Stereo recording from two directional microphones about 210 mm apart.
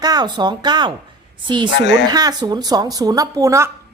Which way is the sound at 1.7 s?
55° left (ahead or behind).